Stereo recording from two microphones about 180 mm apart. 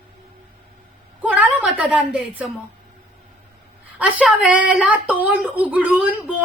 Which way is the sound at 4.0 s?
5° right (ahead or behind).